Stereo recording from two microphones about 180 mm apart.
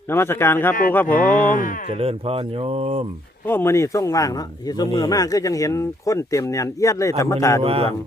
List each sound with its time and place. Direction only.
0.1 s speech: 15° left (ahead or behind)
1.5 s speech: 50° left (ahead or behind)
2.0 s speech: 35° right (ahead or behind)
3.4 s speech: 15° left (ahead or behind)
7.6 s speech: 35° right (ahead or behind)